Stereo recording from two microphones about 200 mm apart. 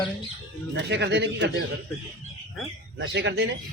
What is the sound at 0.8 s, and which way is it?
Speech, 60° right (ahead or behind).